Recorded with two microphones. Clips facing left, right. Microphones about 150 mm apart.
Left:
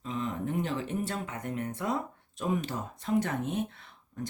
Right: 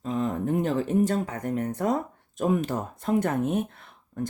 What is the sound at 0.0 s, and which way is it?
Speech, 45° right (ahead or behind).